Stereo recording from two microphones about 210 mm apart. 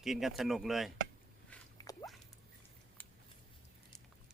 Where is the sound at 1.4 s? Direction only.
15° left (ahead or behind).